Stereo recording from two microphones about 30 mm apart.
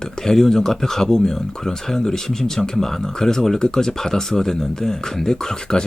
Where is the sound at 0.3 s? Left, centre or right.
Centre.